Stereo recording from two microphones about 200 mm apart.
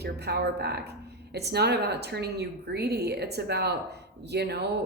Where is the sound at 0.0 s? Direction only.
55° right (ahead or behind).